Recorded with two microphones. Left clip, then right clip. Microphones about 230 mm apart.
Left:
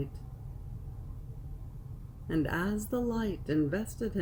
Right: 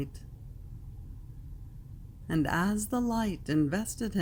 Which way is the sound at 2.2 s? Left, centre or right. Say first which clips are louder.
Right 2 dB; right.